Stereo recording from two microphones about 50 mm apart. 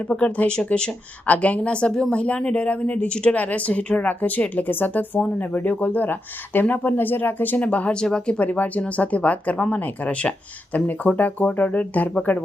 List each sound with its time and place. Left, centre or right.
0.2 s a woman's voice: left
7.7 s a woman's voice: left
7.9 s speech: centre
8.4 s a woman's voice: left